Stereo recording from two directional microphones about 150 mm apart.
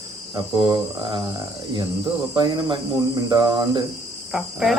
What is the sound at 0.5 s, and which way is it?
Speech, 35° right (ahead or behind).